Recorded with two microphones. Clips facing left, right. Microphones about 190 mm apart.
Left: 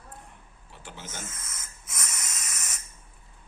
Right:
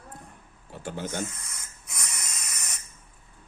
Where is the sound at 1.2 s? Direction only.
Centre (ahead or behind).